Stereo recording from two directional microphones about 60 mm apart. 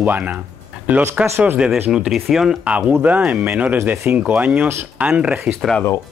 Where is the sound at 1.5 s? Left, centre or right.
Centre.